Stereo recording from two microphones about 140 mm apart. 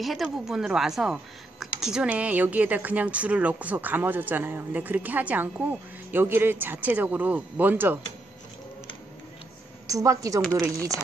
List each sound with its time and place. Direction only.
0.0 s speech: centre (ahead or behind)
9.8 s a woman's voice: 25° right (ahead or behind)